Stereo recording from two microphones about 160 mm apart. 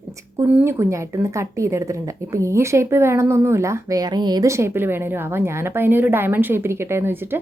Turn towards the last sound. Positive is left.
turn(degrees=-15)  # may be behind; listen again after turning